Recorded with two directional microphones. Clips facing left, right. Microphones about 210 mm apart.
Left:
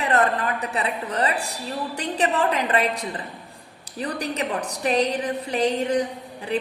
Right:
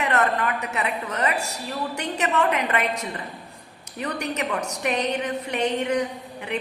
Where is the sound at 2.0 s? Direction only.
30° left (ahead or behind).